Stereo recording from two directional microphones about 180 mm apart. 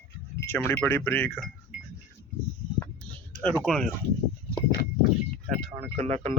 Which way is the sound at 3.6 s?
5° left (ahead or behind).